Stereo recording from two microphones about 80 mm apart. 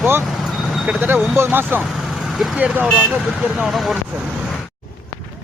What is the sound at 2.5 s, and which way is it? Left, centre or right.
Speech, centre.